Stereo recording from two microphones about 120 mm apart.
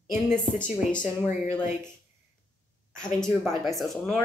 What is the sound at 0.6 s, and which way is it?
Speech, 90° left.